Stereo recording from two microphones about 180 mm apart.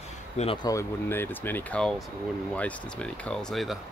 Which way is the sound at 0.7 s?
15° left (ahead or behind).